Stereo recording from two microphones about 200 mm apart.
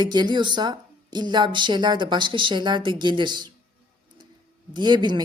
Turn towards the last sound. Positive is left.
turn(degrees=-20)  # may be behind; listen again after turning